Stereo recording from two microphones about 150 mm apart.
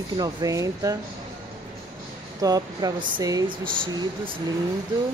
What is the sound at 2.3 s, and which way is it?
Speech, 25° right (ahead or behind).